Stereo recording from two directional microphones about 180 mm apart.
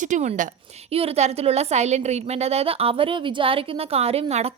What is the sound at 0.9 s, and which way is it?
A woman's voice, 35° right (ahead or behind).